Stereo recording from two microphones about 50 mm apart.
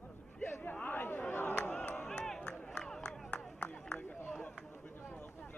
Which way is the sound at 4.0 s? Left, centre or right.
Left.